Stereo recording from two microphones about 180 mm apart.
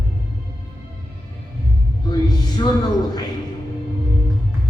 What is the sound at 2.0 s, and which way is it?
Speech, 25° left (ahead or behind).